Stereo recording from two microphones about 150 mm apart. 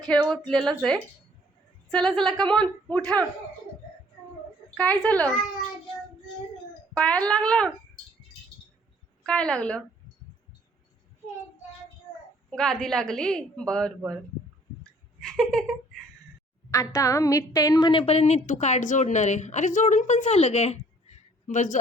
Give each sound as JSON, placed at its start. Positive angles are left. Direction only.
{"t": 0.1, "sound": "a woman's voice", "side_deg": 5}
{"t": 4.8, "sound": "speech", "side_deg": 10}
{"t": 6.9, "sound": "speech", "side_deg": 5}
{"t": 9.2, "sound": "speech", "side_deg": 5}
{"t": 12.5, "sound": "a woman's voice", "side_deg": 5}
{"t": 15.4, "sound": "a woman's voice", "side_deg": 5}
{"t": 16.7, "sound": "a woman's voice", "side_deg": 20}
{"t": 18.0, "sound": "a woman's voice", "side_deg": 45}